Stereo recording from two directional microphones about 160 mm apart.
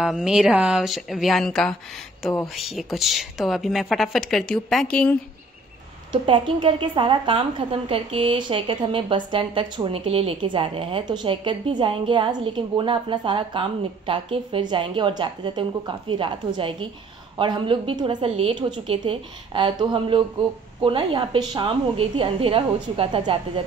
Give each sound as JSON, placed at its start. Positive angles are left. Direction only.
{"t": 0.0, "sound": "a woman's voice", "side_deg": -5}
{"t": 6.2, "sound": "a woman's voice", "side_deg": -30}